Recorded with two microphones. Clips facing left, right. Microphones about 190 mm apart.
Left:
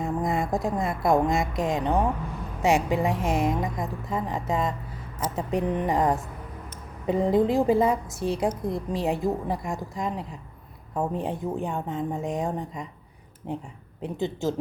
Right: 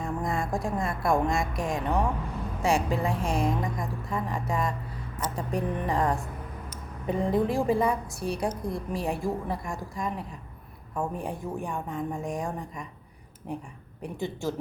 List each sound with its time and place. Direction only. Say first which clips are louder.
0.0 s a woman's voice: left 4 dB; 20° left (ahead or behind)
5.7 s a woman's voice: left 3 dB; 20° left (ahead or behind)